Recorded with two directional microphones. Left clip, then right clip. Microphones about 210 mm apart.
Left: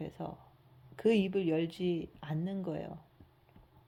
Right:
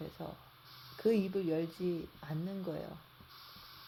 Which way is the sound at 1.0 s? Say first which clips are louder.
Left 3 dB; 50° left (ahead or behind).